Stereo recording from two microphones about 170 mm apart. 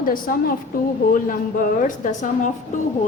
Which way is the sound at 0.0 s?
55° left (ahead or behind).